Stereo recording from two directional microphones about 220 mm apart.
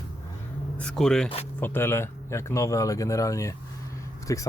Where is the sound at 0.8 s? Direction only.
5° left (ahead or behind).